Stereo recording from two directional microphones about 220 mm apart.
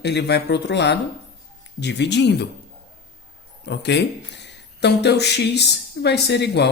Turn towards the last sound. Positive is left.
turn(degrees=50)  # may be behind; listen again after turning